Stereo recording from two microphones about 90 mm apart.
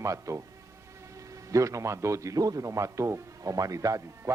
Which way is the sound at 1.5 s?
35° right (ahead or behind).